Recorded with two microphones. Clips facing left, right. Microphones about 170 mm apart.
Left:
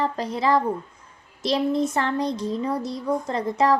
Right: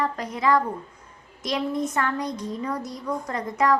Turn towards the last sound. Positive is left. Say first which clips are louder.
# left 2 dB
turn(degrees=30)  # may be behind; listen again after turning